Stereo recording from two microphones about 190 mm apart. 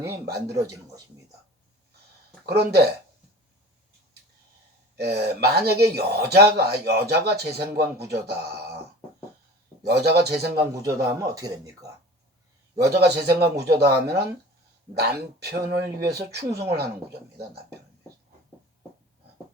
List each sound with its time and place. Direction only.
0.3 s speech: 60° right (ahead or behind)
0.5 s speech: 15° right (ahead or behind)
2.5 s speech: 55° right (ahead or behind)
4.9 s speech: 60° right (ahead or behind)
9.8 s speech: 60° right (ahead or behind)
10.8 s speech: 15° right (ahead or behind)
12.7 s speech: 60° right (ahead or behind)